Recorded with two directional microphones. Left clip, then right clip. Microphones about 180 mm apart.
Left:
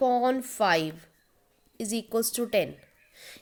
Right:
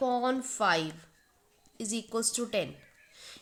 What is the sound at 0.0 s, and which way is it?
A woman's voice, 30° left (ahead or behind).